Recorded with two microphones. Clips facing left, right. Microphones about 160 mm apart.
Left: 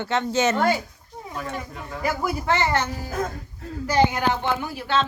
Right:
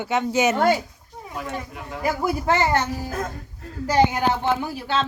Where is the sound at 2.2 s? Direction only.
35° right (ahead or behind).